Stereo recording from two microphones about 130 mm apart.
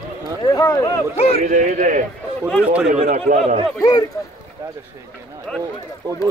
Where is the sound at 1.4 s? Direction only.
65° right (ahead or behind).